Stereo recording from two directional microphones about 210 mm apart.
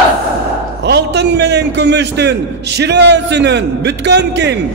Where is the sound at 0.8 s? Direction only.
55° right (ahead or behind).